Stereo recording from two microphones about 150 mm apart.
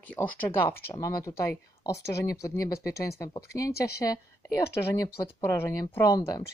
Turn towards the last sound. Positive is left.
turn(degrees=25)  # may be behind; listen again after turning